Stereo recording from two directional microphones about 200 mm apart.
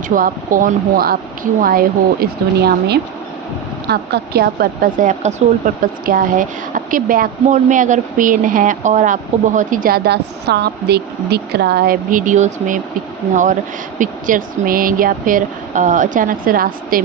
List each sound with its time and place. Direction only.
0.1 s a woman's voice: 45° right (ahead or behind)